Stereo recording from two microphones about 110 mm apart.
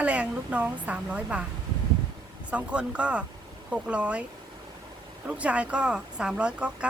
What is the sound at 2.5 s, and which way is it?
A woman's voice, 10° right (ahead or behind).